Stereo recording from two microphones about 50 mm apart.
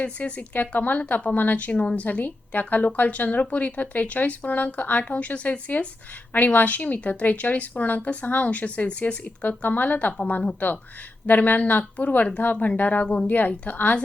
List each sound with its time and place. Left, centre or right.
0.0 s a woman's voice: left